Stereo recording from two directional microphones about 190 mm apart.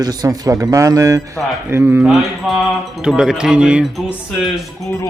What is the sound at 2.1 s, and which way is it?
Mantra, centre (ahead or behind).